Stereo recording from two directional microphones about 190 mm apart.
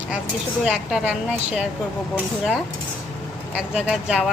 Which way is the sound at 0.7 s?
5° right (ahead or behind).